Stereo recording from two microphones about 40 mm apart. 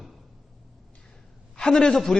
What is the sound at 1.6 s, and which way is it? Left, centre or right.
Speech, centre.